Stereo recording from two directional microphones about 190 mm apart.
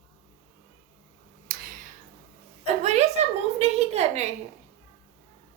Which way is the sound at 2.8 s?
35° right (ahead or behind).